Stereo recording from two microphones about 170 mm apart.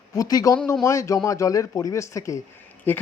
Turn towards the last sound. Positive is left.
turn(degrees=10)  # may be behind; listen again after turning